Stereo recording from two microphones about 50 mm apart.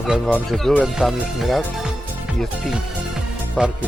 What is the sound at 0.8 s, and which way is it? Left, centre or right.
Speech, centre.